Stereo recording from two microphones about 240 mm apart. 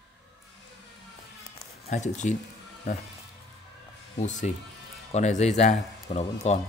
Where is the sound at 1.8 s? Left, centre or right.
Left.